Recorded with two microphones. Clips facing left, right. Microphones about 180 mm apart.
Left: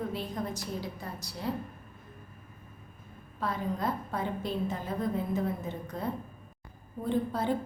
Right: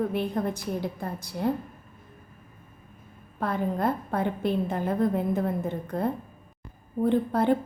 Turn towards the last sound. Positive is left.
turn(degrees=-60)  # may be behind; listen again after turning